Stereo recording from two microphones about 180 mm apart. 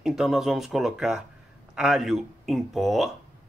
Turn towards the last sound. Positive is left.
turn(degrees=0)  # may be behind; listen again after turning